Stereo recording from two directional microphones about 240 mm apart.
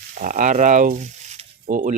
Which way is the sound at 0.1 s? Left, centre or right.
Right.